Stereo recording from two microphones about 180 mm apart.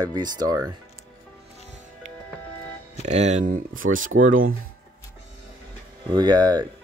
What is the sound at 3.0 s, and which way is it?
Speech, 40° right (ahead or behind).